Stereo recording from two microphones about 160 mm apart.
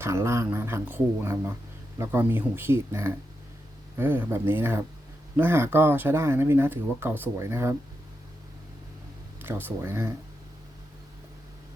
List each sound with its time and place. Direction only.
0.0 s speech: 15° right (ahead or behind)
9.4 s speech: 15° right (ahead or behind)